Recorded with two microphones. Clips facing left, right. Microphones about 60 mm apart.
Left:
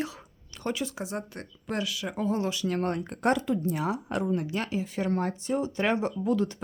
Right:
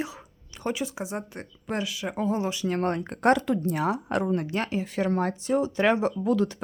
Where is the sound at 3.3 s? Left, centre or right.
Right.